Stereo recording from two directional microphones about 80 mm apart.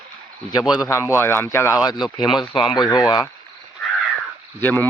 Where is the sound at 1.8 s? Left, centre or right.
Left.